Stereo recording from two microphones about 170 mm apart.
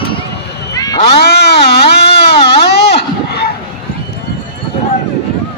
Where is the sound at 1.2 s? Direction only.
75° left (ahead or behind).